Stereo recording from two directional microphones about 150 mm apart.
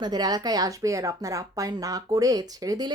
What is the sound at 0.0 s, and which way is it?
A woman's voice, 25° right (ahead or behind).